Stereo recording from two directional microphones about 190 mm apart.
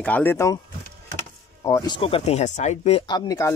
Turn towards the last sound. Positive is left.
turn(degrees=20)  # may be behind; listen again after turning